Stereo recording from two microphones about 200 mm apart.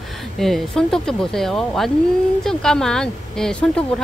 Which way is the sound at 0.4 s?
Centre (ahead or behind).